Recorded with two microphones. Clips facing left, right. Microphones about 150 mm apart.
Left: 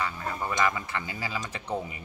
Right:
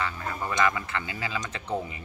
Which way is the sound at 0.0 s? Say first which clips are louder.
Even; 10° left (ahead or behind).